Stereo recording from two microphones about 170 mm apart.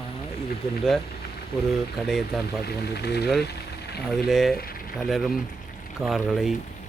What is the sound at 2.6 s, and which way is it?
Speech, 75° left (ahead or behind).